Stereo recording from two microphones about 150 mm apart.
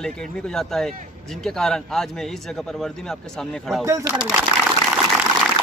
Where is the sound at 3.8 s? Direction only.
20° right (ahead or behind).